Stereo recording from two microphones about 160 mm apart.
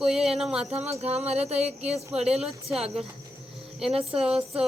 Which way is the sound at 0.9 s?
40° right (ahead or behind).